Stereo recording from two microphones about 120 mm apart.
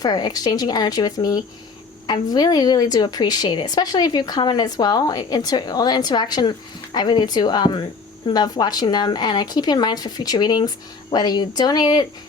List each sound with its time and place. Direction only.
0.0 s a woman's voice: 35° left (ahead or behind)